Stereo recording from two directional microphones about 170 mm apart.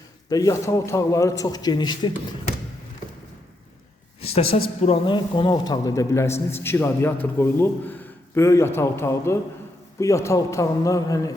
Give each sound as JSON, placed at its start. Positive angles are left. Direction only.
{"t": 0.3, "sound": "a man's voice", "side_deg": 20}
{"t": 4.2, "sound": "a man's voice", "side_deg": 35}